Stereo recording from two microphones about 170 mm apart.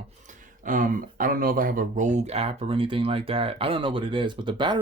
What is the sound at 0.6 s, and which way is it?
Speech, 55° right (ahead or behind).